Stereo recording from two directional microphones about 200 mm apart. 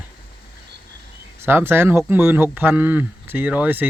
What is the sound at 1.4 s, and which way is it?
Speech, 10° right (ahead or behind).